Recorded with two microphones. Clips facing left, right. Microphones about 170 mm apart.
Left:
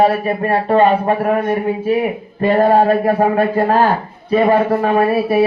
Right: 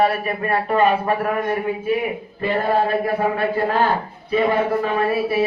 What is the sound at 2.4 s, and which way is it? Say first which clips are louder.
Speech: left 8 dB; 45° left (ahead or behind).